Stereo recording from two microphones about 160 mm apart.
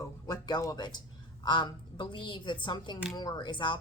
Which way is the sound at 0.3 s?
25° left (ahead or behind).